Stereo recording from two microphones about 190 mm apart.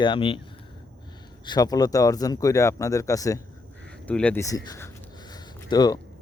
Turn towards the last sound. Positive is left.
turn(degrees=20)  # may be behind; listen again after turning